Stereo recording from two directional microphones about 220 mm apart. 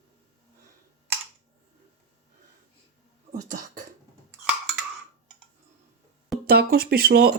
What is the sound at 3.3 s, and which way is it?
Throat clearing, 35° right (ahead or behind).